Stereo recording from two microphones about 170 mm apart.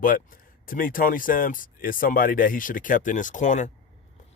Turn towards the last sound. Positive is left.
turn(degrees=45)  # may be behind; listen again after turning